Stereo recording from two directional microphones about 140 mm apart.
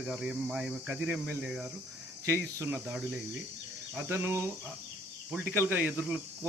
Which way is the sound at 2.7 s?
10° right (ahead or behind).